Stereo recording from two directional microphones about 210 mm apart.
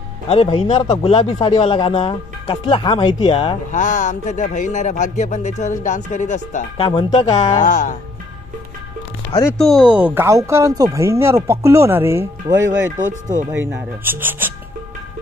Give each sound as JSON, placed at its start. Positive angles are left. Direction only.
{"t": 0.3, "sound": "speech", "side_deg": 25}
{"t": 6.9, "sound": "speech", "side_deg": 20}
{"t": 9.6, "sound": "speech", "side_deg": 0}
{"t": 12.9, "sound": "speech", "side_deg": -35}
{"t": 13.5, "sound": "speech", "side_deg": -10}